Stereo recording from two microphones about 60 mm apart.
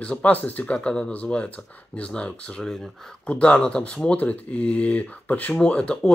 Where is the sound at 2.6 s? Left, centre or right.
Centre.